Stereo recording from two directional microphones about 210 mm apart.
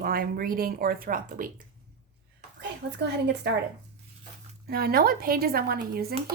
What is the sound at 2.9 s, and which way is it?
Speech, 55° right (ahead or behind).